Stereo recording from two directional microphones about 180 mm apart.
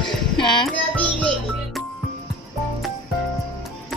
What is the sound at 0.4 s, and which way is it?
Music, 25° left (ahead or behind).